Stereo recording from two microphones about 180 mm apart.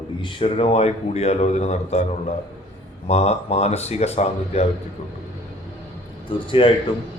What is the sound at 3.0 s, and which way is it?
Speech, 35° left (ahead or behind).